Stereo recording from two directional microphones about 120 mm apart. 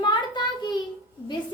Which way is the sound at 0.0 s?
40° left (ahead or behind).